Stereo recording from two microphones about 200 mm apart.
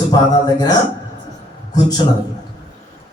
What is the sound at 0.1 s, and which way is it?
Speech, 20° left (ahead or behind).